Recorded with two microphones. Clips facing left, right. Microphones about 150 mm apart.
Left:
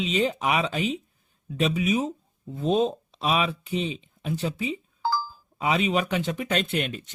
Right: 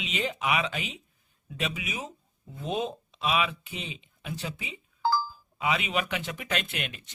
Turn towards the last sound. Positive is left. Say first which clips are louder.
# left 7 dB
turn(degrees=35)  # may be behind; listen again after turning